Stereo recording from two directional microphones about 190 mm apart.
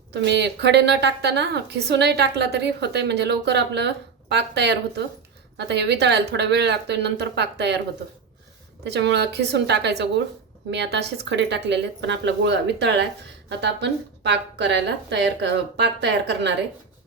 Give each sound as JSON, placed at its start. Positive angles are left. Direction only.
{"t": 0.1, "sound": "a woman's voice", "side_deg": -65}
{"t": 8.8, "sound": "a woman's voice", "side_deg": -65}